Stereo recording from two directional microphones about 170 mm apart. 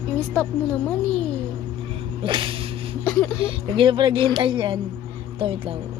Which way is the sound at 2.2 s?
30° right (ahead or behind).